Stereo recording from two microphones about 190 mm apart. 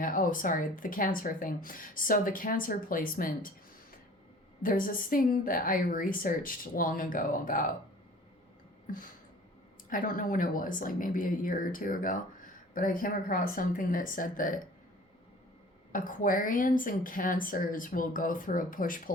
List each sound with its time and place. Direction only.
0.0 s speech: 45° left (ahead or behind)
4.6 s speech: 45° left (ahead or behind)
9.9 s speech: 45° left (ahead or behind)
15.9 s speech: 45° left (ahead or behind)